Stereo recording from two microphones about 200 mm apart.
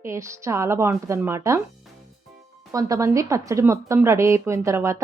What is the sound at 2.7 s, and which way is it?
Speech, 15° right (ahead or behind).